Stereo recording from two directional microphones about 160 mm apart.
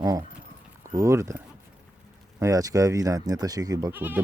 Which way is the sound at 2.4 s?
20° right (ahead or behind).